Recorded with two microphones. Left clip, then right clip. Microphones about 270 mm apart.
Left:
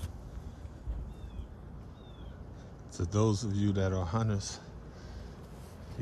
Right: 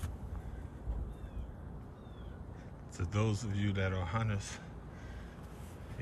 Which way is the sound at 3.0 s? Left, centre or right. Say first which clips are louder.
Left 6 dB; centre.